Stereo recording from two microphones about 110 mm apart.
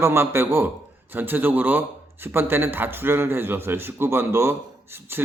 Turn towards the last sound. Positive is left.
turn(degrees=-20)  # may be behind; listen again after turning